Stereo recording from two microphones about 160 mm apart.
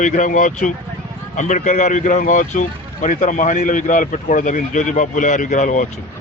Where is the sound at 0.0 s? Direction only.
55° left (ahead or behind).